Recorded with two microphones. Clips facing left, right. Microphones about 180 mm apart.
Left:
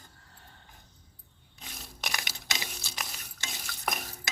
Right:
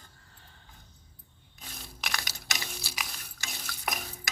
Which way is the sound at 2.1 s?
20° left (ahead or behind).